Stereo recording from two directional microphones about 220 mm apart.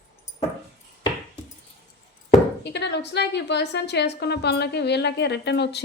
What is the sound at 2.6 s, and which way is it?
A woman's voice, 50° left (ahead or behind).